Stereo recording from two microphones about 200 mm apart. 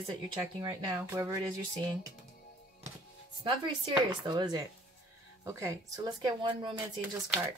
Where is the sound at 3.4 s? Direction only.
25° right (ahead or behind).